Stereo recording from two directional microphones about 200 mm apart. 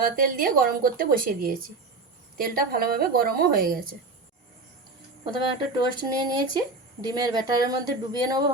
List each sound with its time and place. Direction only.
0.0 s a woman's voice: 45° right (ahead or behind)
5.7 s speech: 20° right (ahead or behind)